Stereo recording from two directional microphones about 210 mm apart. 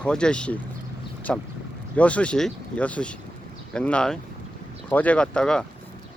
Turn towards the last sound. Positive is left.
turn(degrees=5)  # may be behind; listen again after turning